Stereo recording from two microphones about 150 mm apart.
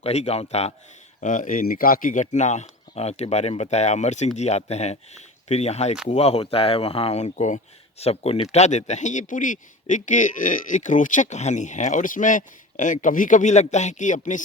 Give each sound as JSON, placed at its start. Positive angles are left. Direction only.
{"t": 0.0, "sound": "speech", "side_deg": 45}
{"t": 1.2, "sound": "speech", "side_deg": 60}